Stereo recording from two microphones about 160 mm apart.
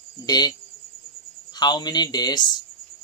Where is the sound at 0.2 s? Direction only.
25° left (ahead or behind).